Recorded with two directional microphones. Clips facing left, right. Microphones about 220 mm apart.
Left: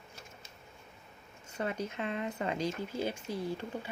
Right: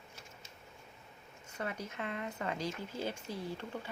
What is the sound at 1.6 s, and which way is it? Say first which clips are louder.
Speech: left 5 dB; 25° left (ahead or behind).